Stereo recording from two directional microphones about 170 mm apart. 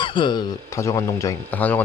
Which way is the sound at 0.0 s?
30° left (ahead or behind).